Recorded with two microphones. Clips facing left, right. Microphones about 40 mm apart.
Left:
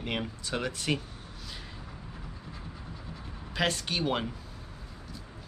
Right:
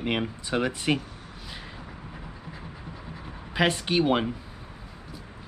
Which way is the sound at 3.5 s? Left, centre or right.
Centre.